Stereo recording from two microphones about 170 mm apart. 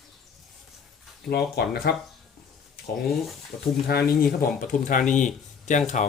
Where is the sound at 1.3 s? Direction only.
70° left (ahead or behind).